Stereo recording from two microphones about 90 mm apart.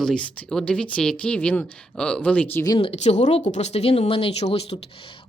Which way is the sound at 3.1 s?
90° left.